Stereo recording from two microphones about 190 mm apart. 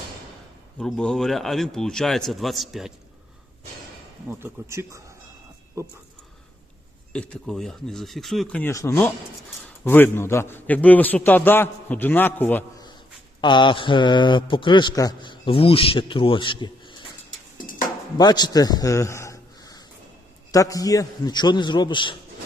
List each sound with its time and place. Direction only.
0.8 s speech: 5° left (ahead or behind)
4.3 s speech: 10° right (ahead or behind)
7.1 s a man's voice: 5° left (ahead or behind)
13.4 s a man's voice: 25° left (ahead or behind)
17.6 s a sound: 45° left (ahead or behind)
18.2 s a man's voice: 20° left (ahead or behind)